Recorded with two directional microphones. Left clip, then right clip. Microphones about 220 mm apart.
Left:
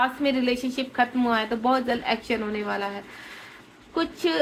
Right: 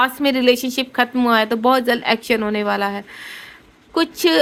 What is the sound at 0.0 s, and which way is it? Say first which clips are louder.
A woman's voice: right 7 dB; 55° right (ahead or behind).